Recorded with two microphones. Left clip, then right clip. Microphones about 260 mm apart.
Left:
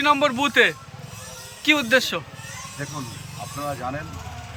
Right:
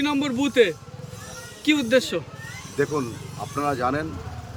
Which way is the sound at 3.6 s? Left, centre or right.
Centre.